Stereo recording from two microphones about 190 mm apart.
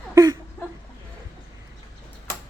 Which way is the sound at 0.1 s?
20° right (ahead or behind).